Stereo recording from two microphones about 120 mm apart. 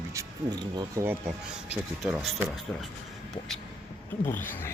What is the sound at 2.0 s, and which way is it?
Speech, centre (ahead or behind).